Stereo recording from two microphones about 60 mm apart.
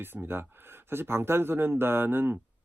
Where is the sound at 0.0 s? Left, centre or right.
Right.